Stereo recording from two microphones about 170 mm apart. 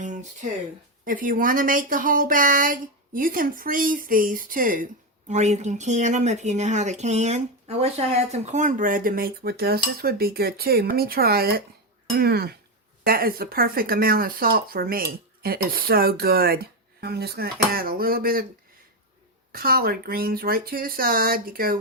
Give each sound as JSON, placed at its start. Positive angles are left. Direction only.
{"t": 0.0, "sound": "a sound", "side_deg": -45}
{"t": 1.0, "sound": "speech", "side_deg": -55}
{"t": 5.3, "sound": "speech", "side_deg": -40}
{"t": 19.5, "sound": "speech", "side_deg": -60}